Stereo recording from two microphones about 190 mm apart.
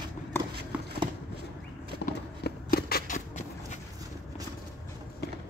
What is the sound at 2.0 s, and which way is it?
Clip-clop, 50° left (ahead or behind).